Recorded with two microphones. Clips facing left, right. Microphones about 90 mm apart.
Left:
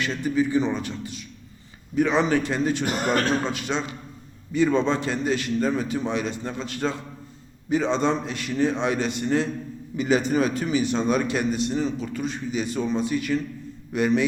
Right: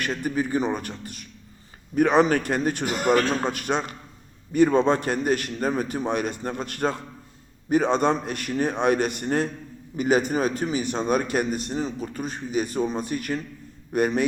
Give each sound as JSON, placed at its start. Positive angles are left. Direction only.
{"t": 0.2, "sound": "a man's voice", "side_deg": -50}